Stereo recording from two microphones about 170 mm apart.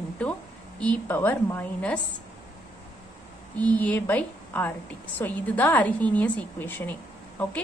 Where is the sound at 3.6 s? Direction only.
10° left (ahead or behind).